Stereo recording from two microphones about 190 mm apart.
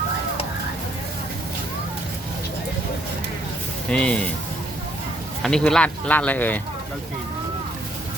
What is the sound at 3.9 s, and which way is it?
Speech, 5° left (ahead or behind).